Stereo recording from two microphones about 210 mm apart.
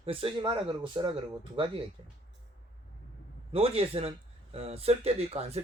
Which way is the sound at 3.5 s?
25° right (ahead or behind).